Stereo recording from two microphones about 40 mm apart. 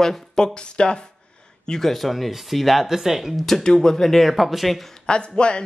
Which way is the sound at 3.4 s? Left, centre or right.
Centre.